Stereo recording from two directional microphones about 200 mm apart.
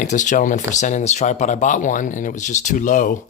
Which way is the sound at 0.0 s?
40° left (ahead or behind).